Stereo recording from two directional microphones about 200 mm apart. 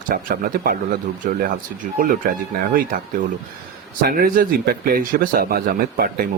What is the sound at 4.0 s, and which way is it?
A man's voice, 45° right (ahead or behind).